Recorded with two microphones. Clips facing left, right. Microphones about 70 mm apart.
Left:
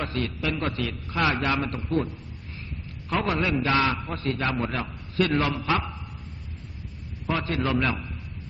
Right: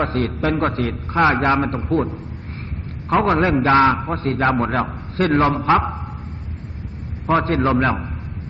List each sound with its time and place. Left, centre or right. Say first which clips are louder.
0.0 s a man's voice: right 8 dB; right
3.1 s a man's voice: right 9 dB; right
7.2 s a man's voice: right 9 dB; right